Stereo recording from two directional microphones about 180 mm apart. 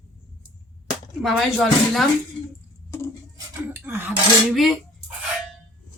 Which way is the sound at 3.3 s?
10° right (ahead or behind).